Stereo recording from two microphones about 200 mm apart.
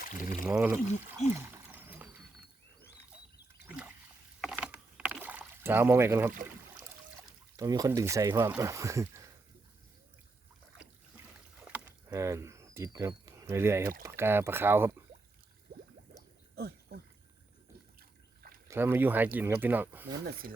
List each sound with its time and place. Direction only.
0.0 s speech: 45° left (ahead or behind)
0.4 s speech: 5° right (ahead or behind)
1.3 s a sound: 10° right (ahead or behind)
4.4 s rowboat: 5° right (ahead or behind)
7.5 s speech: 20° right (ahead or behind)
11.7 s a sound: 15° right (ahead or behind)
14.0 s speech: 10° right (ahead or behind)
16.6 s a sound: 50° right (ahead or behind)
18.7 s speech: 10° right (ahead or behind)